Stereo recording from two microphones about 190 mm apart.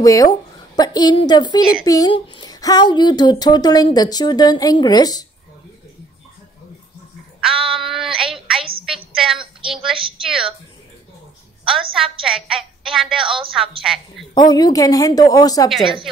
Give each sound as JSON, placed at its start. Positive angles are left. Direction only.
{"t": 0.0, "sound": "speech", "side_deg": 20}
{"t": 7.4, "sound": "child singing", "side_deg": 0}
{"t": 9.1, "sound": "a woman's voice", "side_deg": 0}
{"t": 9.9, "sound": "a woman's voice", "side_deg": -30}
{"t": 11.9, "sound": "a woman's voice", "side_deg": 0}
{"t": 13.2, "sound": "a woman's voice", "side_deg": -25}
{"t": 13.5, "sound": "a woman's voice", "side_deg": 0}
{"t": 14.3, "sound": "speech", "side_deg": 20}
{"t": 15.8, "sound": "a woman's voice", "side_deg": -25}